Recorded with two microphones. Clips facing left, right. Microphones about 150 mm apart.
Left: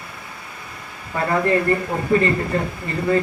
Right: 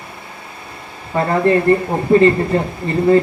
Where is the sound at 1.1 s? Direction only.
30° right (ahead or behind).